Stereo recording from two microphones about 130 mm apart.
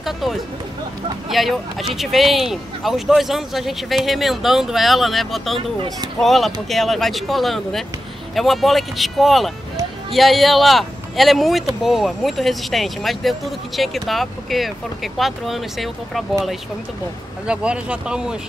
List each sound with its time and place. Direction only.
0.0 s speech: centre (ahead or behind)
17.5 s speech: 10° right (ahead or behind)